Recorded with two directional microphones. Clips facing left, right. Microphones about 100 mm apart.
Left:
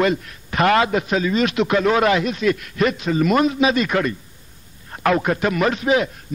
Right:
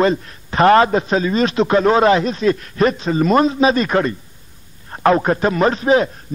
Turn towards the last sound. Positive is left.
turn(degrees=-35)  # may be behind; listen again after turning